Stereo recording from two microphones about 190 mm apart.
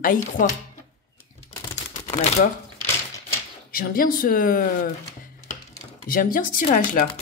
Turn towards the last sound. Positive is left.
turn(degrees=45)  # may be behind; listen again after turning